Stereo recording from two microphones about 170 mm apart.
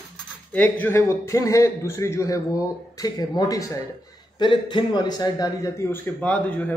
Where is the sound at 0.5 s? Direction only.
10° left (ahead or behind).